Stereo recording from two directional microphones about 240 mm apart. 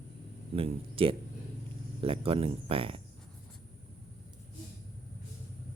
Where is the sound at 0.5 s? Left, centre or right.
Right.